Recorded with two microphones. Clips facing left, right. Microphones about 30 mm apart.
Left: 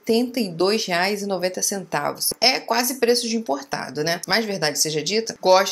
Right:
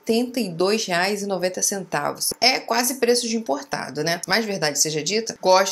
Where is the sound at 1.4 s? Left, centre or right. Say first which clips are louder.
Even; centre.